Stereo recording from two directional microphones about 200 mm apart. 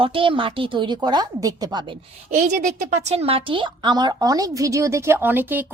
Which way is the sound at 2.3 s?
35° right (ahead or behind).